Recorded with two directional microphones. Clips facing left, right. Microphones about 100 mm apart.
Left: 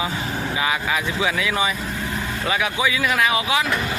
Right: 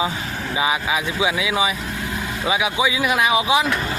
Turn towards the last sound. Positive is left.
turn(degrees=-20)  # may be behind; listen again after turning